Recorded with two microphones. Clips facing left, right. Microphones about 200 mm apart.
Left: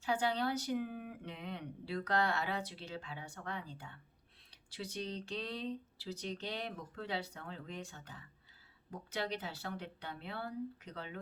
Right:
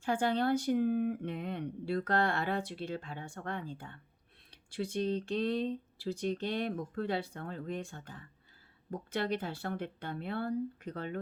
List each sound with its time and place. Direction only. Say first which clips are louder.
0.0 s speech: right 4 dB; 50° right (ahead or behind)